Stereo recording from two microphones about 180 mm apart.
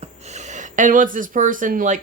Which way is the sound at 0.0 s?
40° right (ahead or behind).